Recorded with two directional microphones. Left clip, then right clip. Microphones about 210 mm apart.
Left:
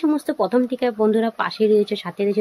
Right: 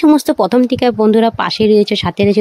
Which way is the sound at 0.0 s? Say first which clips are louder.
Right 10 dB; 50° right (ahead or behind).